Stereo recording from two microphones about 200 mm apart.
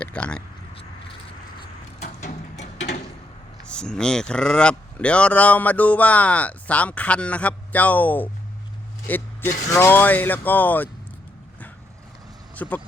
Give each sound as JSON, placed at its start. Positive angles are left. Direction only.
{"t": 0.0, "sound": "speech", "side_deg": 5}
{"t": 2.0, "sound": "a sound", "side_deg": 35}
{"t": 3.7, "sound": "speech", "side_deg": 5}
{"t": 12.5, "sound": "speech", "side_deg": 10}